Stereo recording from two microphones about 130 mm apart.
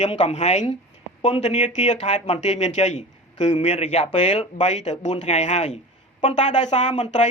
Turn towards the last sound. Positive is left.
turn(degrees=65)  # may be behind; listen again after turning